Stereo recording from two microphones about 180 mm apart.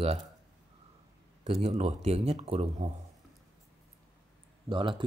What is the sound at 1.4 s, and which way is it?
Speech, 40° right (ahead or behind).